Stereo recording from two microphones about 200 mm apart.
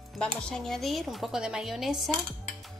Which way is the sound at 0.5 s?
Centre (ahead or behind).